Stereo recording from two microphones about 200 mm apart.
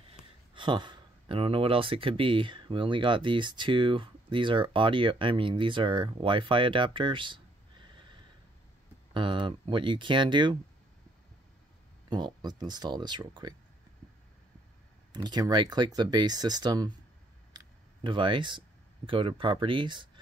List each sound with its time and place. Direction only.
0.1 s speech: 25° right (ahead or behind)
9.1 s speech: 25° right (ahead or behind)
12.1 s speech: 20° right (ahead or behind)
15.1 s speech: 20° right (ahead or behind)
17.5 s a sound: 20° right (ahead or behind)
19.0 s speech: 25° right (ahead or behind)